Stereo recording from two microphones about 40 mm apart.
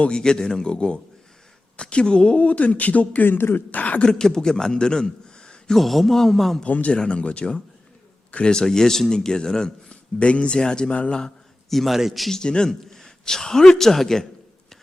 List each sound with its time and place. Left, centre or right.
0.0 s speech: left
3.2 s speech: left
3.7 s speech: left
4.0 s speech: centre
4.8 s a sound: centre
5.7 s a man's voice: centre
6.7 s speech: left
6.9 s speech: left
8.6 s speech: centre
9.9 s speech: left
11.7 s a man's voice: centre
12.3 s speech: centre